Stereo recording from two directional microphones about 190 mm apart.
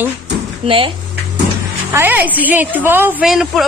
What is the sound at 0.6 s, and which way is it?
Speech, 30° right (ahead or behind).